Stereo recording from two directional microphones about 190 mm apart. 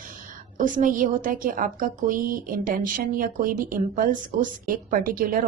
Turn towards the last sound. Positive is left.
turn(degrees=-45)  # may be behind; listen again after turning